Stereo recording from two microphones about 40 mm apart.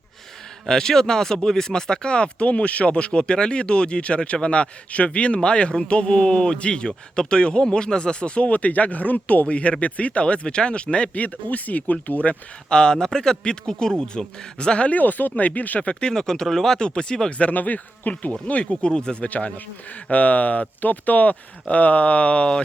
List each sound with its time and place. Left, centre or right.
0.7 s speech: centre
11.1 s speech: left
12.7 s speech: centre
14.8 s speech: left
15.8 s speech: left
16.1 s speech: centre
17.5 s speech: left
18.4 s speech: left
19.3 s speech: left